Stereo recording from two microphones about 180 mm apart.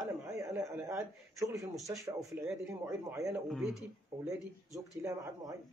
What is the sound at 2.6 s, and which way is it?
Speech, 20° right (ahead or behind).